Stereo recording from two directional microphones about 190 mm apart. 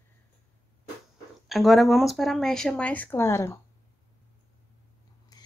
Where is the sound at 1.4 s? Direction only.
Centre (ahead or behind).